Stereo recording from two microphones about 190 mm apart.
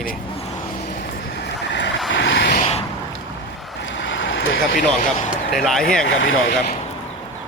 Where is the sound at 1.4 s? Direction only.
65° left (ahead or behind).